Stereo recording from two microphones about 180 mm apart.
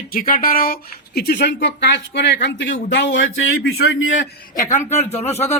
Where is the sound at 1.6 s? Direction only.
75° left (ahead or behind).